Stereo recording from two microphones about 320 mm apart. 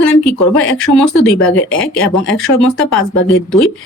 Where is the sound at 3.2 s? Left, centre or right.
Left.